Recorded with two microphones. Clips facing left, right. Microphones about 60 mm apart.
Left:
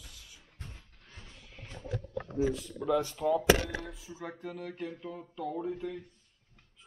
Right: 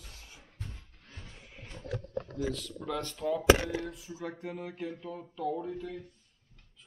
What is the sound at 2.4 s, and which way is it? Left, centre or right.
Speech, centre.